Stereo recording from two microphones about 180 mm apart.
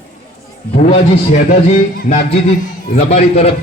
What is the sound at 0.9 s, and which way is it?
Speech, 40° left (ahead or behind).